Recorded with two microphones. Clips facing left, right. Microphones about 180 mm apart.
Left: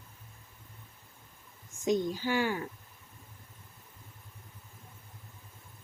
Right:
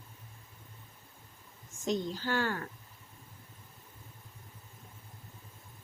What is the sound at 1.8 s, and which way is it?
Speech, 15° left (ahead or behind).